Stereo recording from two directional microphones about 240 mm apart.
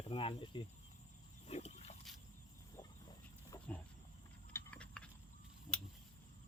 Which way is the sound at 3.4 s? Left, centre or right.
Centre.